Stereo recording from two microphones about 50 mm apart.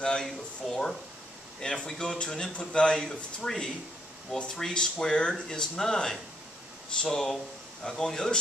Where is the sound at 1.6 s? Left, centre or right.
Centre.